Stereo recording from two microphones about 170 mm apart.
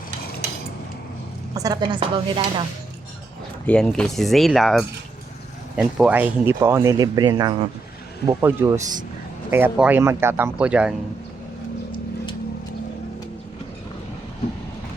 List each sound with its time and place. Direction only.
1.5 s speech: 20° right (ahead or behind)
3.7 s speech: 5° left (ahead or behind); by 7.5 s 25° right (ahead or behind)
8.3 s speech: 15° right (ahead or behind)